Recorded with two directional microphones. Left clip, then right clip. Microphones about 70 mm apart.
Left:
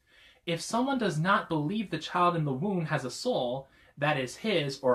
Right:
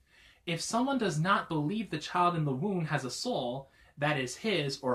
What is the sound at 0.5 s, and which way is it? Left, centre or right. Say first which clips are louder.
Speech: left 2 dB; left.